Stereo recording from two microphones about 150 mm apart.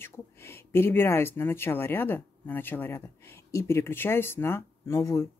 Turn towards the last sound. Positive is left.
turn(degrees=20)  # may be behind; listen again after turning